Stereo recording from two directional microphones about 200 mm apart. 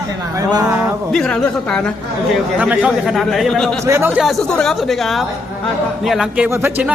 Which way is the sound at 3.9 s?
10° right (ahead or behind).